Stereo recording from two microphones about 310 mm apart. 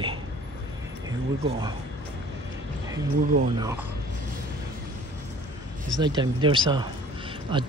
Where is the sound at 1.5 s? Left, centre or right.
Centre.